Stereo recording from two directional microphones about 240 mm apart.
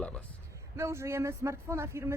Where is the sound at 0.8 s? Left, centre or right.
Centre.